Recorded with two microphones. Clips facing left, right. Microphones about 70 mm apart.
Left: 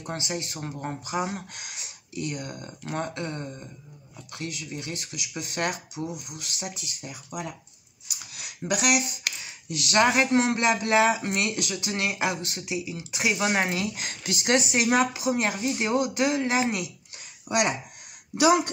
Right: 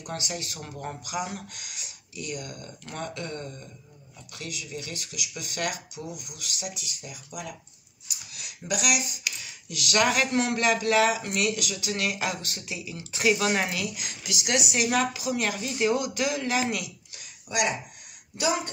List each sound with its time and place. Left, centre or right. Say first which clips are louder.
0.0 s speech: left 2 dB; left
4.3 s speech: left 2 dB; left
8.3 s a sound: left 3 dB; left
9.3 s a sound: left 2 dB; left
9.7 s speech: left 2 dB; left
13.9 s speech: left 3 dB; left
17.5 s speech: left 2 dB; left
18.3 s speech: left 7 dB; left